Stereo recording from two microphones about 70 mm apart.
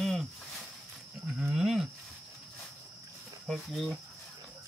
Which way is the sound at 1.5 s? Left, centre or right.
Centre.